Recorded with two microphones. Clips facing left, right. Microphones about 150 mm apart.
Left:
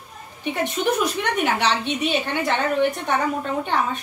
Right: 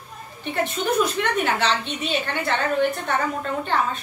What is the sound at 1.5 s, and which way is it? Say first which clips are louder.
A woman's voice: left 2 dB; 15° left (ahead or behind).